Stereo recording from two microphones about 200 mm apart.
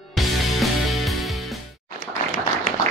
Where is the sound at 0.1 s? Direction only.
Centre (ahead or behind).